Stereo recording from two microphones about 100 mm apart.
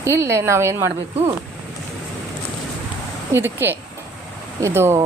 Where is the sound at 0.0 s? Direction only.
25° right (ahead or behind).